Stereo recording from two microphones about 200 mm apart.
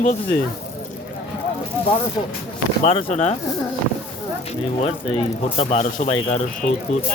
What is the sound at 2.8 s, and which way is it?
Speech, 35° left (ahead or behind).